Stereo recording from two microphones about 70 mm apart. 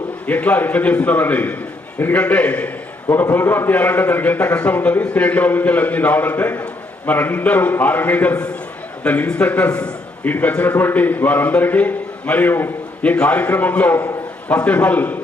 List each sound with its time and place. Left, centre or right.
0.3 s a man's voice: left
13.0 s a man's voice: centre